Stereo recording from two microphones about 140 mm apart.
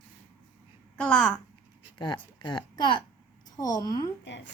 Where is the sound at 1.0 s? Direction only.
10° left (ahead or behind).